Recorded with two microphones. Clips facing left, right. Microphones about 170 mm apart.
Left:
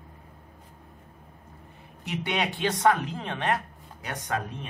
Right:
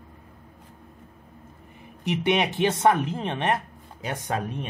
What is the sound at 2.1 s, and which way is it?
A man's voice, 20° right (ahead or behind).